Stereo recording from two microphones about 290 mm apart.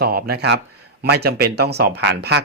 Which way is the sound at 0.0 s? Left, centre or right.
Right.